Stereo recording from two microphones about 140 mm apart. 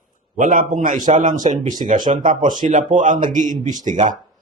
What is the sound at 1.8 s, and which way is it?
Speech, 50° right (ahead or behind).